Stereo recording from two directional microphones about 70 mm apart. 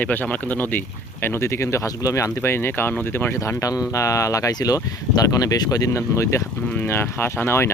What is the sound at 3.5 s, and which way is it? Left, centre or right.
Speech, left.